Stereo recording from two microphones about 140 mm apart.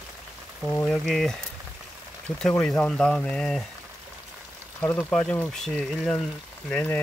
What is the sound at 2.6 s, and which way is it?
Speech, 5° left (ahead or behind).